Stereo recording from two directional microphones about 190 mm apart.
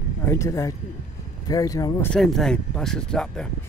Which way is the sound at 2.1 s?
Centre (ahead or behind).